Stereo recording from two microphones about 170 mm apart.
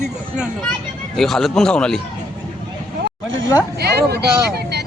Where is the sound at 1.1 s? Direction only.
Centre (ahead or behind).